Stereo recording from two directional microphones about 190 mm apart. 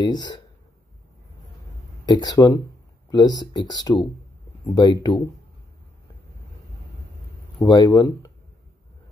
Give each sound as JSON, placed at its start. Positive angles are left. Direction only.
{"t": 0.0, "sound": "speech", "side_deg": 20}
{"t": 2.0, "sound": "speech", "side_deg": 20}
{"t": 7.5, "sound": "speech", "side_deg": 20}